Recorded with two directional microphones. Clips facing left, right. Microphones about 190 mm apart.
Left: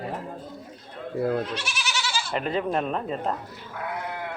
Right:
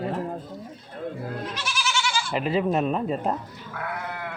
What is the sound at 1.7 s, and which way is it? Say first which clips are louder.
Goat: right 3 dB; 35° left (ahead or behind).